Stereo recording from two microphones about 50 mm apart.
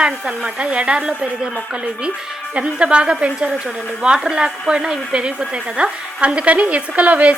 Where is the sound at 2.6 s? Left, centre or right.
Right.